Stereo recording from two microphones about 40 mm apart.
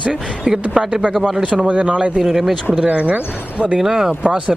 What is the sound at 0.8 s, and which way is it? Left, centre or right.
Speech, centre.